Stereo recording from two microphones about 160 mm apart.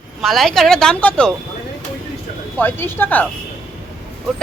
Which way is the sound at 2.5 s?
10° left (ahead or behind).